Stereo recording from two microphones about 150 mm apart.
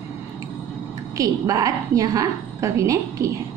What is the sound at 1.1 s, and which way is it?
A woman's voice, 25° right (ahead or behind).